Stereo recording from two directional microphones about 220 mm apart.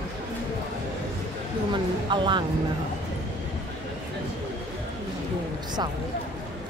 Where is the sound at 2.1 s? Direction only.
20° right (ahead or behind).